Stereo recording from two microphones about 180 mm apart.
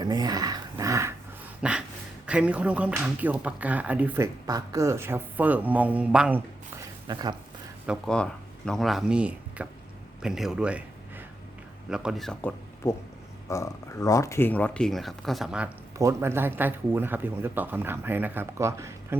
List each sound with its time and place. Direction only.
0.0 s a sound: 20° right (ahead or behind)
1.6 s a sound: 5° right (ahead or behind)
2.2 s speech: 5° right (ahead or behind)
4.4 s speech: 20° right (ahead or behind)
7.1 s speech: 25° right (ahead or behind)
7.9 s speech: 5° left (ahead or behind)
11.9 s speech: 5° right (ahead or behind)
16.0 s speech: 15° right (ahead or behind)